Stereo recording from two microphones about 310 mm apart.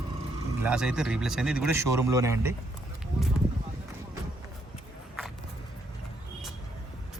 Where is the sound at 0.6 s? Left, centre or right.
Centre.